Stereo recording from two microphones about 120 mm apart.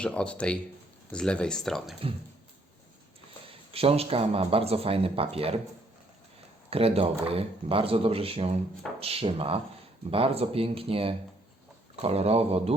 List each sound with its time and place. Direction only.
0.0 s speech: 10° left (ahead or behind)
3.7 s speech: 55° right (ahead or behind)
6.7 s speech: 55° right (ahead or behind)